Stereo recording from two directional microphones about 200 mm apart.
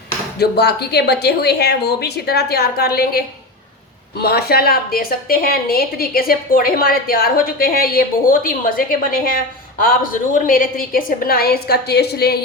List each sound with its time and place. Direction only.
0.3 s a woman's voice: 55° left (ahead or behind)